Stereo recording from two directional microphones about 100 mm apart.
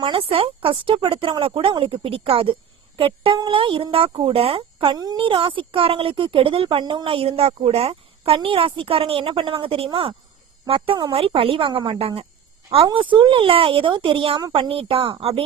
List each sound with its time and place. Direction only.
0.0 s a woman's voice: 65° right (ahead or behind)
4.9 s a woman's voice: 40° right (ahead or behind)
5.2 s a woman's voice: 60° right (ahead or behind)
12.7 s a woman's voice: 55° right (ahead or behind)